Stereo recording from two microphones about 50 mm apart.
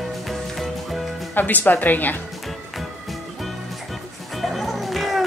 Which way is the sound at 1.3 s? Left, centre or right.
Left.